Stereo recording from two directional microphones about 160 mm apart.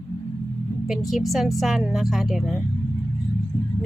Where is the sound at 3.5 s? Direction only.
20° left (ahead or behind).